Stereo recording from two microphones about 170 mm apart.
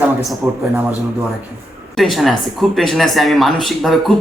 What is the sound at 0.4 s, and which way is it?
Speech, 5° right (ahead or behind).